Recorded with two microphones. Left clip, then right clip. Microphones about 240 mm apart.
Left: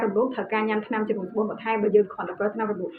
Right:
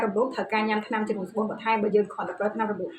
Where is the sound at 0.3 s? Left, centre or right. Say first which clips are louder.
Even; right.